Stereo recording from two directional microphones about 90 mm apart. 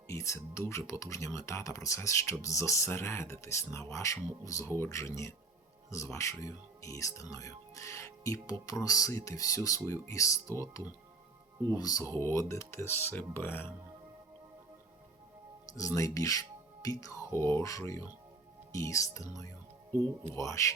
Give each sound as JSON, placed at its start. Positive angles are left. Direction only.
{"t": 0.1, "sound": "speech", "side_deg": 35}
{"t": 11.7, "sound": "speech", "side_deg": 45}
{"t": 12.1, "sound": "speech", "side_deg": 30}
{"t": 15.7, "sound": "speech", "side_deg": 40}